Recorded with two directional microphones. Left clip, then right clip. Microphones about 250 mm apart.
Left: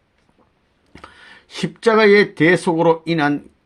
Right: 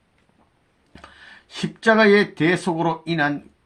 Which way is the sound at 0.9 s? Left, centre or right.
Left.